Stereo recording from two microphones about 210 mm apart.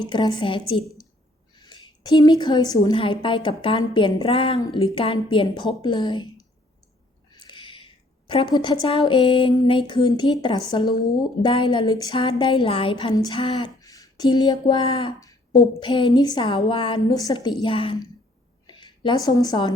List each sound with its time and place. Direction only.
0.0 s speech: 20° left (ahead or behind)
7.3 s a sound: 20° left (ahead or behind)
8.3 s a woman's voice: 20° left (ahead or behind)